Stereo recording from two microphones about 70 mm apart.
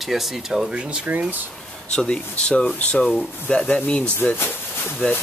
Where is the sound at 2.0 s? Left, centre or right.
Centre.